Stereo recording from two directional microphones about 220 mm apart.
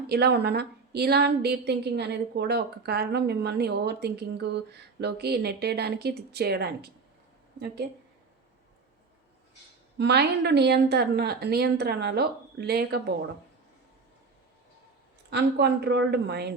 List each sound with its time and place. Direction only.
0.1 s a woman's voice: 45° right (ahead or behind)
10.0 s a woman's voice: 50° right (ahead or behind)
15.3 s a woman's voice: 50° right (ahead or behind)